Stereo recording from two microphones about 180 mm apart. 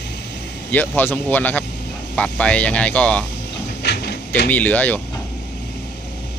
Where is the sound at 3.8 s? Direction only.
65° left (ahead or behind).